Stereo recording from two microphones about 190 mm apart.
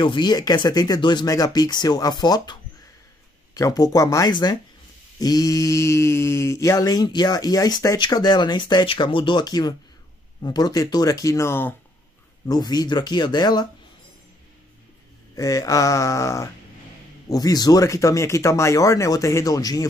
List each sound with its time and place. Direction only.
0.0 s mantra: 25° left (ahead or behind)
10.4 s speech: 20° left (ahead or behind)
12.4 s mantra: 20° left (ahead or behind)
15.3 s speech: 20° left (ahead or behind)